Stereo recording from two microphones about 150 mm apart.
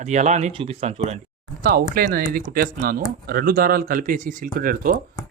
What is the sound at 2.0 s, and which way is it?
Speech, 90° right.